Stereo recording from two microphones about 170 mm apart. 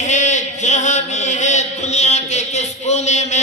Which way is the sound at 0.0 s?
45° left (ahead or behind).